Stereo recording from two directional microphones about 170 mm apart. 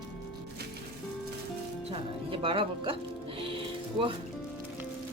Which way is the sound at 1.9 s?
30° right (ahead or behind).